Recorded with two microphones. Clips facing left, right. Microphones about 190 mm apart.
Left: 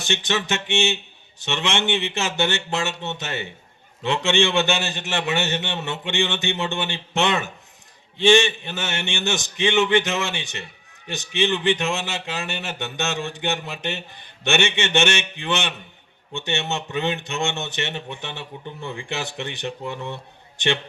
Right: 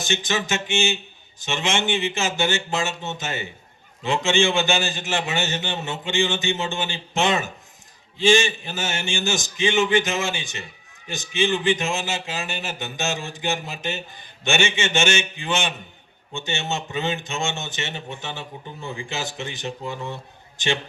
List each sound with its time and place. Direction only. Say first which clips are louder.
0.0 s a man's voice: even; 65° left (ahead or behind)